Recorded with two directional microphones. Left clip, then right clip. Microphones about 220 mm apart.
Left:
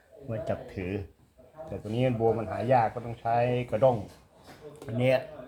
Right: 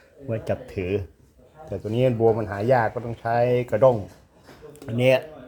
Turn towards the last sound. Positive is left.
turn(degrees=-40)  # may be behind; listen again after turning